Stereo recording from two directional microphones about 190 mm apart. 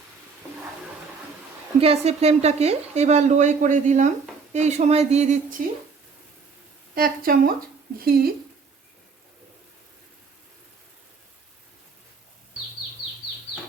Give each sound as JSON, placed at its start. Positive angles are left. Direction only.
{"t": 1.8, "sound": "a woman's voice", "side_deg": -30}
{"t": 6.9, "sound": "speech", "side_deg": -50}